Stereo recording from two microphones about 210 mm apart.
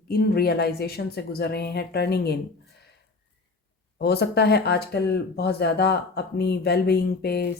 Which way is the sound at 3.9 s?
50° left (ahead or behind).